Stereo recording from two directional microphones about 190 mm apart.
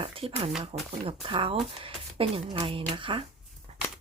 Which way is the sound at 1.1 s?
25° right (ahead or behind).